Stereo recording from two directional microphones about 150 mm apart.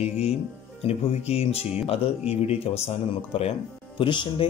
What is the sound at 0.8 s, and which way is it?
Speech, 45° left (ahead or behind).